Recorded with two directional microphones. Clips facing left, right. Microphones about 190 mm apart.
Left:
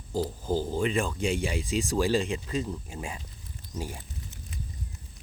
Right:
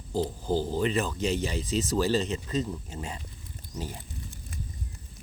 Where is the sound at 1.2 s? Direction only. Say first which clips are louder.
Even; 10° left (ahead or behind).